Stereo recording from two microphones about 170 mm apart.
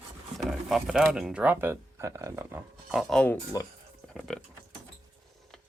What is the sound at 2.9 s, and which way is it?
Speech, centre (ahead or behind).